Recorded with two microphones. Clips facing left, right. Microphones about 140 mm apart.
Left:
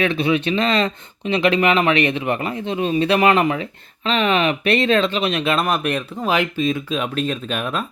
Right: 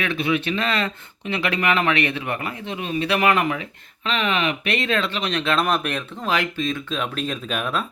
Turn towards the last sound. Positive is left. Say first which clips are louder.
# left 1 dB
turn(degrees=0)  # may be behind; listen again after turning